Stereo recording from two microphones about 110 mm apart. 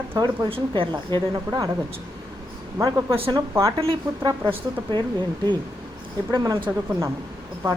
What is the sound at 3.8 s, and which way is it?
Speech, 55° right (ahead or behind).